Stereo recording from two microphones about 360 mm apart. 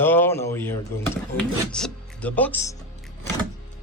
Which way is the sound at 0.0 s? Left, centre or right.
Centre.